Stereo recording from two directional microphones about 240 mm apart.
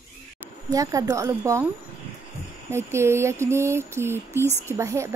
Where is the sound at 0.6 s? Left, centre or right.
Centre.